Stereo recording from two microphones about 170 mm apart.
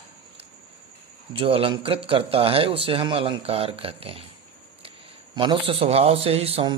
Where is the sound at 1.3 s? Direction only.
35° right (ahead or behind).